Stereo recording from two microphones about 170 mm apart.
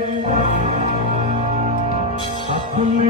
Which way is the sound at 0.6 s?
45° right (ahead or behind).